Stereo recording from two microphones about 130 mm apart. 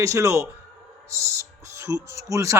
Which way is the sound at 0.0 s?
25° right (ahead or behind).